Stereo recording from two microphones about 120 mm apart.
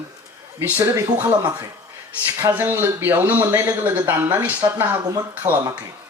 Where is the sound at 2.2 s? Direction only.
15° right (ahead or behind).